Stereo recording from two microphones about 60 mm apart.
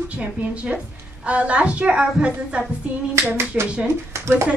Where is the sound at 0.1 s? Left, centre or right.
Right.